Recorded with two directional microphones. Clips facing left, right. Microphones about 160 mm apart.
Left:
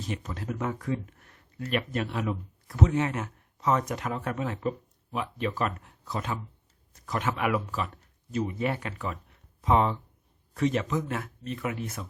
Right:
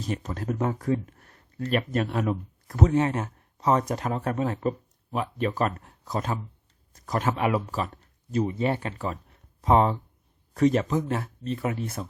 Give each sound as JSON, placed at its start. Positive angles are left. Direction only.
{"t": 0.0, "sound": "speech", "side_deg": -40}